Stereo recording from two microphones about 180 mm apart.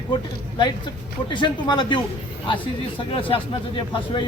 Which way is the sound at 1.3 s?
25° left (ahead or behind).